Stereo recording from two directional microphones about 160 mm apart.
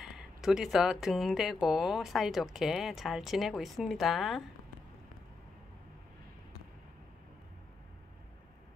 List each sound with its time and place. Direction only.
0.0 s speech: centre (ahead or behind)